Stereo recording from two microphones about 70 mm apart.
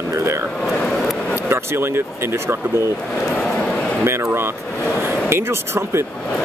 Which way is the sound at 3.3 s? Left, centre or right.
Centre.